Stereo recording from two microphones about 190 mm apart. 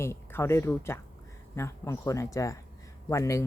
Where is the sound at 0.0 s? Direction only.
15° left (ahead or behind).